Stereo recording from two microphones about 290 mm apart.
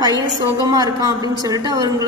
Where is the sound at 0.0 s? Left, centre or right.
Centre.